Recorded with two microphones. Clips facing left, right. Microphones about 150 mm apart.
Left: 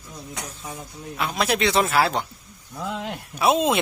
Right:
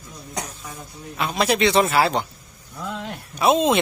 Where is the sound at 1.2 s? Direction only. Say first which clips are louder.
Right 3 dB; centre (ahead or behind).